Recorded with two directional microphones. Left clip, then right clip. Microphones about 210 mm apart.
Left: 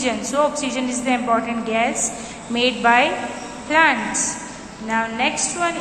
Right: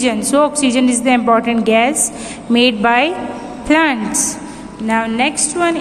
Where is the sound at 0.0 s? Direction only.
45° right (ahead or behind).